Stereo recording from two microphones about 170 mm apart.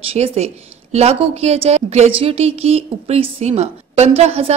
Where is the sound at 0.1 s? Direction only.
35° right (ahead or behind).